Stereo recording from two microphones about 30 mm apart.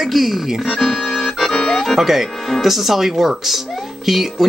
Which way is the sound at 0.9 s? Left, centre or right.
Centre.